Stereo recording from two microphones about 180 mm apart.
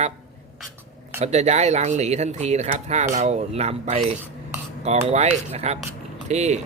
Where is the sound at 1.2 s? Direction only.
40° right (ahead or behind).